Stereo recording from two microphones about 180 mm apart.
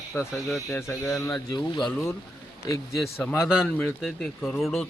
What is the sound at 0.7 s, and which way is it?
Speech, 15° left (ahead or behind).